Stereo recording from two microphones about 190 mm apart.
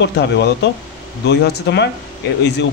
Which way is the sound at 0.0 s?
65° left (ahead or behind).